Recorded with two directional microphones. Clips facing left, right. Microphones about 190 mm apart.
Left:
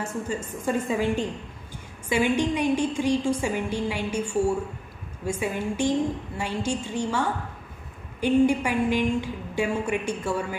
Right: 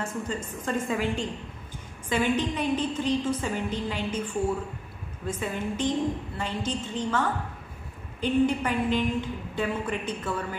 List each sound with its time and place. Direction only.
0.0 s a woman's voice: 10° left (ahead or behind)
2.0 s a woman's voice: 10° left (ahead or behind)